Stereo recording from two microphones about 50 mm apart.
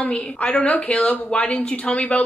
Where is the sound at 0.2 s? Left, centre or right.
Left.